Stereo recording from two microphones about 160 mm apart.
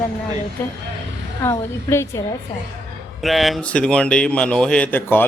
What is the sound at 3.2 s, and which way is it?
A man's voice, centre (ahead or behind).